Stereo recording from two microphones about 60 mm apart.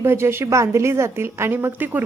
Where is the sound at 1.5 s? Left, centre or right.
Right.